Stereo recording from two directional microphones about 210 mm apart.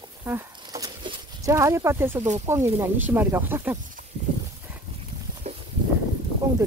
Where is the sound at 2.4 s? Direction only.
10° right (ahead or behind).